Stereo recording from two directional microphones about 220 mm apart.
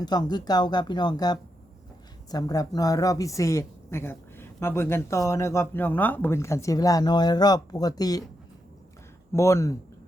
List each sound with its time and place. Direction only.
0.0 s a woman's voice: 20° left (ahead or behind)
9.3 s a woman's voice: 15° left (ahead or behind)